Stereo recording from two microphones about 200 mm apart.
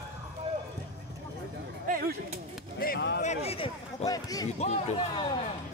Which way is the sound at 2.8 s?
50° left (ahead or behind).